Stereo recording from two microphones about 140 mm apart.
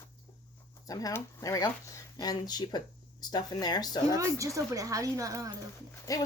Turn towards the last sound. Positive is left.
turn(degrees=25)  # may be behind; listen again after turning